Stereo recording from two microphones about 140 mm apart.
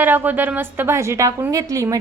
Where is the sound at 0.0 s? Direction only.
15° right (ahead or behind).